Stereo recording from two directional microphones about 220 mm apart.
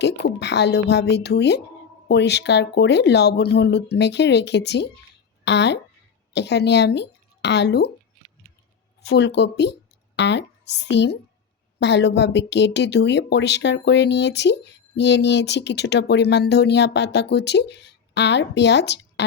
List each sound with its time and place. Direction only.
0.0 s speech: 50° left (ahead or behind)
9.0 s speech: 50° left (ahead or behind)